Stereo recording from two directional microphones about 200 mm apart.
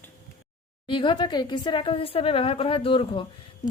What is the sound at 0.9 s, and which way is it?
A woman's voice, 25° left (ahead or behind).